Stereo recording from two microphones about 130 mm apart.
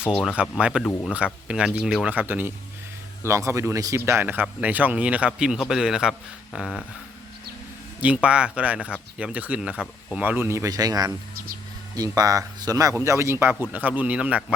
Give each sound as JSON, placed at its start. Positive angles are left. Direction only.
{"t": 0.2, "sound": "speech", "side_deg": -5}
{"t": 8.0, "sound": "speech", "side_deg": -10}
{"t": 9.7, "sound": "speech", "side_deg": 10}
{"t": 10.2, "sound": "speech", "side_deg": -15}